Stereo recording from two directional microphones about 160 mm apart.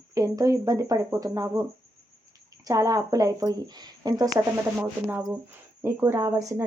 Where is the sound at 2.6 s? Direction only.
20° right (ahead or behind).